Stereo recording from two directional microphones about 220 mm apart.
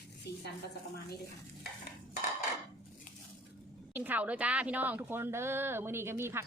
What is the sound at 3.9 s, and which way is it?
A woman's voice, 10° right (ahead or behind).